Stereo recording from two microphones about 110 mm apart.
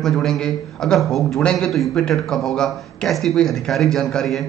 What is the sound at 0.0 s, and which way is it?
A man's voice, 5° left (ahead or behind).